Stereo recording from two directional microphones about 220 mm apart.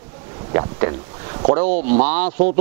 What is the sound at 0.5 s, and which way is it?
Speech, 10° right (ahead or behind).